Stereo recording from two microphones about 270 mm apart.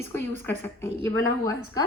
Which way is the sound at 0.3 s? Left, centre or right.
Centre.